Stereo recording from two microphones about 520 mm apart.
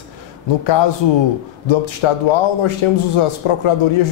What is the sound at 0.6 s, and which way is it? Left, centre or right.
A man's voice, left.